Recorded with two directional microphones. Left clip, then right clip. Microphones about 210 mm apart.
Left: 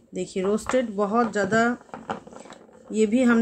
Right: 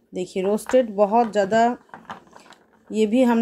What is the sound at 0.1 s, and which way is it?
Speech, 25° right (ahead or behind).